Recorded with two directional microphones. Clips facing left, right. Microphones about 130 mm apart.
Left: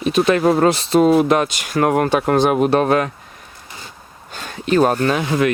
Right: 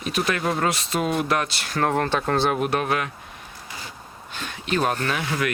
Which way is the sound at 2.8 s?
40° left (ahead or behind).